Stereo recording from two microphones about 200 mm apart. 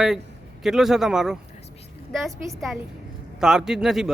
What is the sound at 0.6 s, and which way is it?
Speech, centre (ahead or behind).